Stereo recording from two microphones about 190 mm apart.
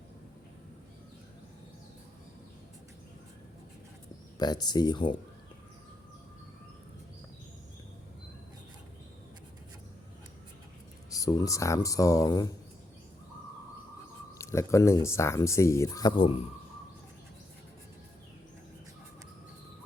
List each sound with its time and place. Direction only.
4.4 s speech: 20° left (ahead or behind)
11.1 s speech: 20° left (ahead or behind)
14.3 s speech: 15° left (ahead or behind)